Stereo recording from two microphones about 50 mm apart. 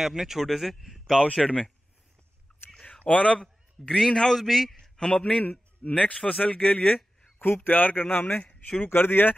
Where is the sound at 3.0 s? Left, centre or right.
Centre.